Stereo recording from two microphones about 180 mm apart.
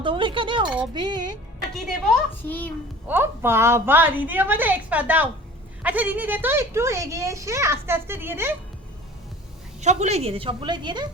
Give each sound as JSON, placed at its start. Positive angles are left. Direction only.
{"t": 0.0, "sound": "speech", "side_deg": -25}
{"t": 1.7, "sound": "a woman's voice", "side_deg": 0}
{"t": 3.1, "sound": "a child's voice", "side_deg": -10}
{"t": 9.8, "sound": "a woman's voice", "side_deg": -40}